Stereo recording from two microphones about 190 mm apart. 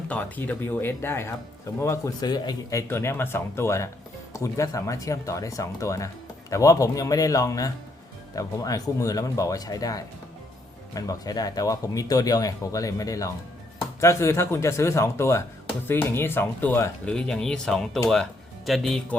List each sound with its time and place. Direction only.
0.1 s speech: 10° left (ahead or behind)